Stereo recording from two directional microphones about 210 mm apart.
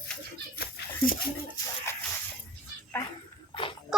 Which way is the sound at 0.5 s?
45° left (ahead or behind).